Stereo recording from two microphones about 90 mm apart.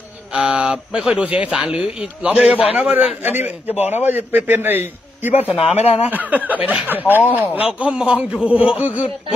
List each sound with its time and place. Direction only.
0.3 s a man's voice: 15° right (ahead or behind)